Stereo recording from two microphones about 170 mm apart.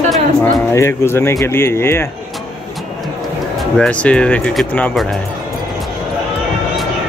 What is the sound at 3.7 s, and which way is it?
Speech, 5° left (ahead or behind).